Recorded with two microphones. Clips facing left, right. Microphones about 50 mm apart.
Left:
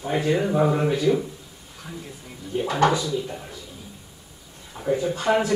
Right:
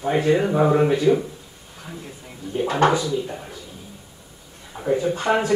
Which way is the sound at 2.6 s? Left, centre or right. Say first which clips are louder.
Right 2 dB; right.